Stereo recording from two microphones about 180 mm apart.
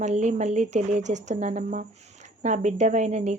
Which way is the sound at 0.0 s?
40° right (ahead or behind).